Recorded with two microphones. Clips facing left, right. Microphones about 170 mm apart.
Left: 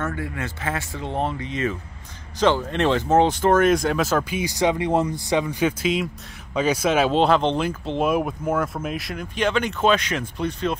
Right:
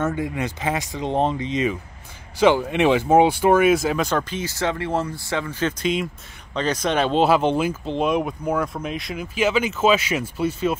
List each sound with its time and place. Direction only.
0.0 s speech: 20° right (ahead or behind)